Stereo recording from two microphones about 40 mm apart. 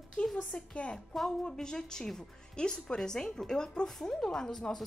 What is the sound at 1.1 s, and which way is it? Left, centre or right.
A woman's voice, centre.